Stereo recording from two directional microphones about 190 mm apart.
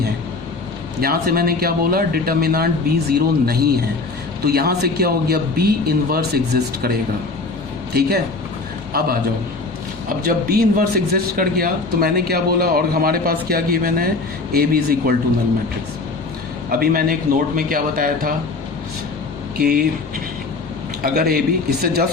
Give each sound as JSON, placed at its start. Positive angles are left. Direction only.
{"t": 1.0, "sound": "a man's voice", "side_deg": -50}
{"t": 8.9, "sound": "a man's voice", "side_deg": -50}
{"t": 10.2, "sound": "a man's voice", "side_deg": -50}
{"t": 16.8, "sound": "a man's voice", "side_deg": -50}
{"t": 19.5, "sound": "speech", "side_deg": -50}
{"t": 21.0, "sound": "a man's voice", "side_deg": -55}